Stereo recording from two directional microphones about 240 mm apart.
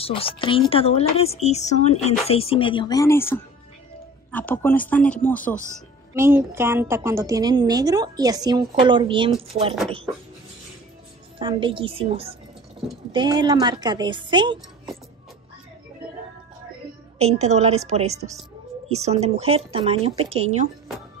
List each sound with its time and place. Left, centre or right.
0.0 s speech: left; by 5.6 s centre
6.1 s a woman's voice: centre
11.3 s speech: right
17.2 s speech: right